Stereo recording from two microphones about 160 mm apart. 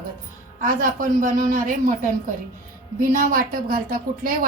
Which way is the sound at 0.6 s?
60° right (ahead or behind).